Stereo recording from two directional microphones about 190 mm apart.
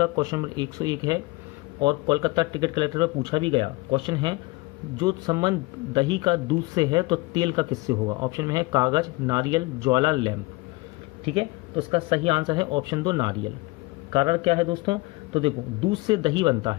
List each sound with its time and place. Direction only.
0.0 s speech: 20° right (ahead or behind)